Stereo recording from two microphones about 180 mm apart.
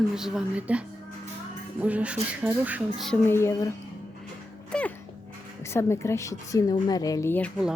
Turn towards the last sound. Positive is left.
turn(degrees=10)  # may be behind; listen again after turning